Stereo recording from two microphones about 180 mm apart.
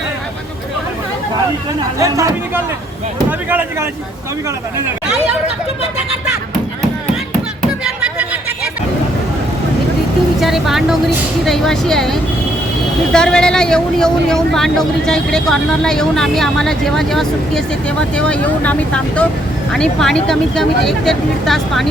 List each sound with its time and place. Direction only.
1.8 s speech: 20° right (ahead or behind)
7.9 s vehicle: 5° right (ahead or behind)
10.4 s speech: centre (ahead or behind)